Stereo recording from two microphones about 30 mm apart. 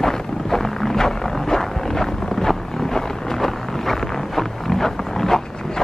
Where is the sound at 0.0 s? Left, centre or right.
Centre.